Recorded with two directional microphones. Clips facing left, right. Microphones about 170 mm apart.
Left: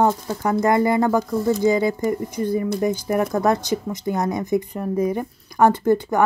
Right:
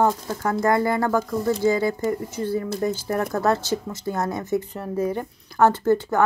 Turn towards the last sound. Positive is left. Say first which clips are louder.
# left 2 dB
turn(degrees=15)  # may be behind; listen again after turning